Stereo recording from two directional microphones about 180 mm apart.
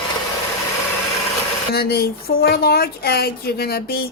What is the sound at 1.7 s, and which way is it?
A woman's voice, 60° left (ahead or behind).